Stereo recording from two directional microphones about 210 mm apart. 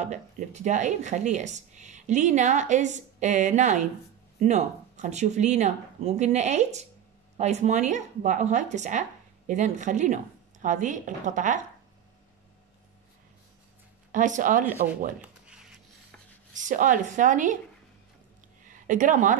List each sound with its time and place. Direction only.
0.0 s speech: 35° right (ahead or behind)
14.1 s speech: 35° right (ahead or behind)
15.2 s a sound: 5° right (ahead or behind)
16.5 s speech: 40° right (ahead or behind)
18.7 s speech: 35° right (ahead or behind)